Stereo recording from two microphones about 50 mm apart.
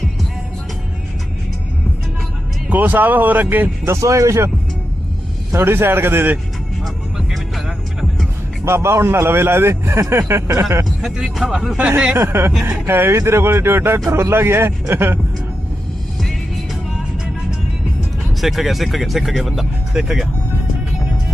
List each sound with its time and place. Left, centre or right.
2.6 s speech: right
3.8 s speech: right
5.5 s a man's voice: right
6.8 s music: centre
8.6 s a man's voice: right
10.8 s speech: centre
11.8 s speech: right
12.2 s a man's voice: right
14.1 s a man's voice: right
18.3 s speech: centre